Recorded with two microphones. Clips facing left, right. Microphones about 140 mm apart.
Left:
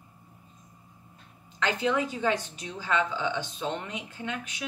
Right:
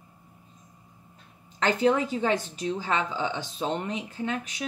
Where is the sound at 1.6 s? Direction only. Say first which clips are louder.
Right 4 dB; 40° right (ahead or behind).